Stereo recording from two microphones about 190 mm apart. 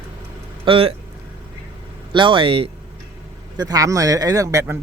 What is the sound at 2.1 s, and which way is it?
Speech, 25° right (ahead or behind).